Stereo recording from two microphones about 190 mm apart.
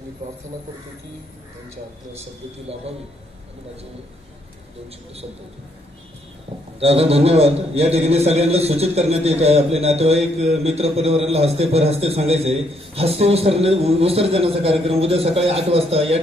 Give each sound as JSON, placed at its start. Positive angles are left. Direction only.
{"t": 0.2, "sound": "a man's voice", "side_deg": -40}
{"t": 6.8, "sound": "a man's voice", "side_deg": -30}